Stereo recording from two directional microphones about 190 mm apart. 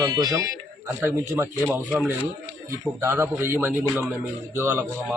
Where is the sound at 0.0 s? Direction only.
20° right (ahead or behind).